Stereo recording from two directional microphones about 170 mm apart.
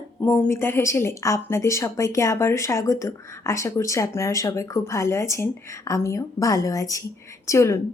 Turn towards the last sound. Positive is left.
turn(degrees=15)  # may be behind; listen again after turning